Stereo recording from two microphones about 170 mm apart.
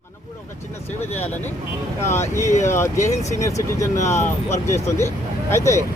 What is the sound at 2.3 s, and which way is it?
Speech, 15° left (ahead or behind).